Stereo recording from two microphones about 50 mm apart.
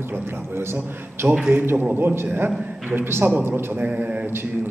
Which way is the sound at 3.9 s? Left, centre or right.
Right.